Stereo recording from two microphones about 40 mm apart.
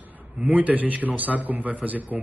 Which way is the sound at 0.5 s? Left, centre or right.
Right.